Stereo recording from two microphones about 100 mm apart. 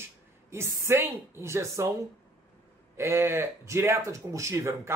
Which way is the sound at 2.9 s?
25° right (ahead or behind).